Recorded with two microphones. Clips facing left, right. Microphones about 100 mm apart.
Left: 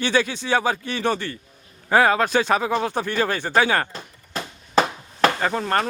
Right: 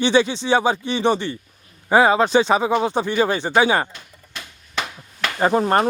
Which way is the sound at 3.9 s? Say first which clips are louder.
Left 7 dB; 35° left (ahead or behind).